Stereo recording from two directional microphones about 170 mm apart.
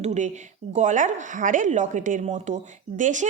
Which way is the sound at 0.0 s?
40° right (ahead or behind).